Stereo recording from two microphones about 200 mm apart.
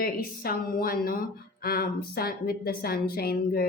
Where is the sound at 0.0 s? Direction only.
45° left (ahead or behind).